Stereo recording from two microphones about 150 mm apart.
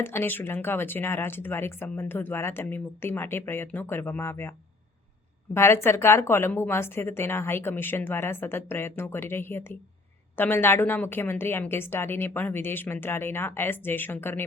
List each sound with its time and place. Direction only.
0.0 s speech: 15° left (ahead or behind)
5.5 s speech: 15° left (ahead or behind)